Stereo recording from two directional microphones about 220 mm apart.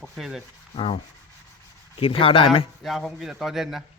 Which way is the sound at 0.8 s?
25° left (ahead or behind).